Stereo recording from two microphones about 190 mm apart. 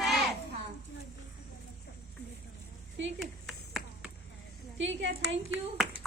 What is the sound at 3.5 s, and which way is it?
Finger snapping, centre (ahead or behind).